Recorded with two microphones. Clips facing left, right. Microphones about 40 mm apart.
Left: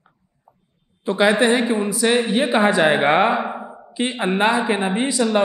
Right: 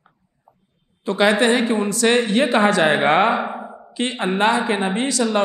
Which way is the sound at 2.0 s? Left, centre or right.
Centre.